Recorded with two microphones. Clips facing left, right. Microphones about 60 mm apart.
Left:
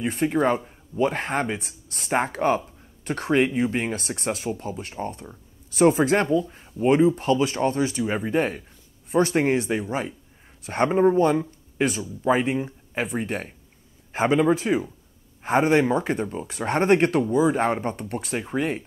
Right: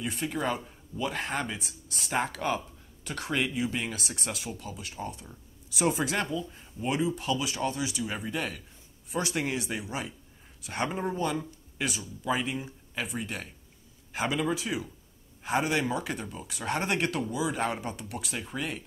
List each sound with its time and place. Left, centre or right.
0.0 s speech: left